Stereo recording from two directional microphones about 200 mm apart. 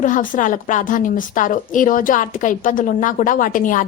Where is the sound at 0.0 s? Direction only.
40° left (ahead or behind).